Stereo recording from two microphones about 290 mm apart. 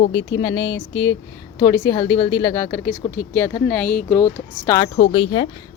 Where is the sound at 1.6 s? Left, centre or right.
Centre.